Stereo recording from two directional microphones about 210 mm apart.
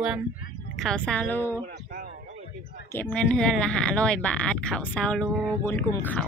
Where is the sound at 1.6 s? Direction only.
45° right (ahead or behind).